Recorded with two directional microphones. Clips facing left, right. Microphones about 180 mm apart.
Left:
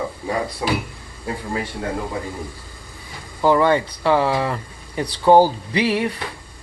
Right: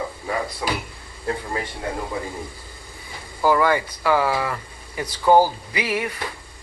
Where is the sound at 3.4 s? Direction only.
25° left (ahead or behind).